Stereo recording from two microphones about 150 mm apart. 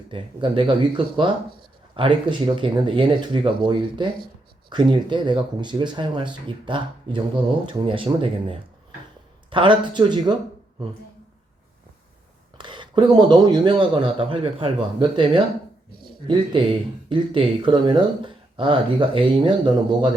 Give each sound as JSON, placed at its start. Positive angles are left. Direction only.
{"t": 0.1, "sound": "speech", "side_deg": -35}
{"t": 12.5, "sound": "speech", "side_deg": -30}